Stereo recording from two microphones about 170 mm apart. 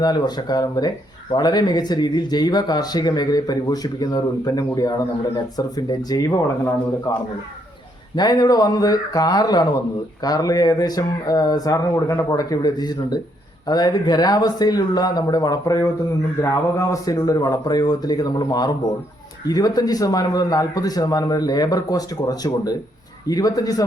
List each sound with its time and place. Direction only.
0.0 s speech: 25° left (ahead or behind)